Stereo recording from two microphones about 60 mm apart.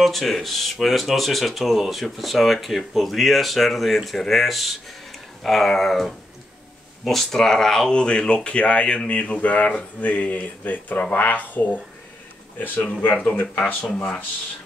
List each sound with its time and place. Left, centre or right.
0.0 s speech: centre; by 13.8 s left